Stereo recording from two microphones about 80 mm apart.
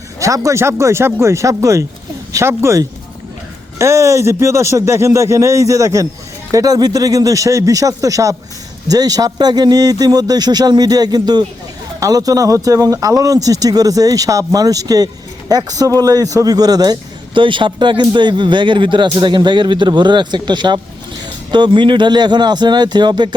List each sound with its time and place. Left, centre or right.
0.2 s a man's voice: right
11.9 s a man's voice: right
17.3 s speech: right